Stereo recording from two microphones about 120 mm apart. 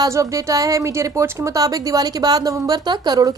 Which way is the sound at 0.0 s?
25° right (ahead or behind).